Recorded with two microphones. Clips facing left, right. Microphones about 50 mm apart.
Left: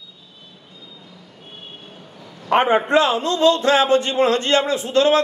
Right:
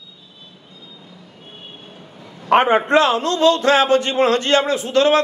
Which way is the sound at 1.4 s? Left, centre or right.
Centre.